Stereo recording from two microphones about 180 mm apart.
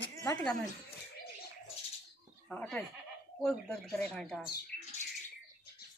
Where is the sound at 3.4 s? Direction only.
5° left (ahead or behind).